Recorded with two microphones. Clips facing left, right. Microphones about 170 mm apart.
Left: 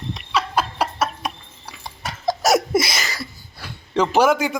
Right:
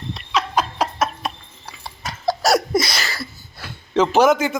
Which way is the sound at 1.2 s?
15° left (ahead or behind).